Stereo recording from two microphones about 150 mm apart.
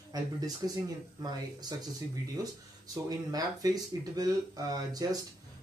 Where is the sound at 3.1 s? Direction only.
25° right (ahead or behind).